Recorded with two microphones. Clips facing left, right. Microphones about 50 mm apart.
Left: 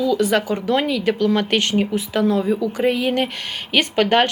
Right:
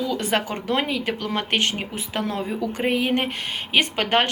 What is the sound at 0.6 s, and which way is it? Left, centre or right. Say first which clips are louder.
Speech: left 5 dB; right.